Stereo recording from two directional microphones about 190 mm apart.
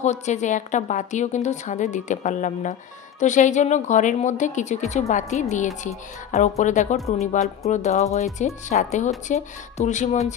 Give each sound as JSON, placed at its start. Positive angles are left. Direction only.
{"t": 0.0, "sound": "a woman's voice", "side_deg": 40}